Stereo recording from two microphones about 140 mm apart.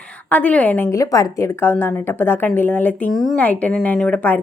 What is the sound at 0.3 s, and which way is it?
A woman's voice, 10° left (ahead or behind).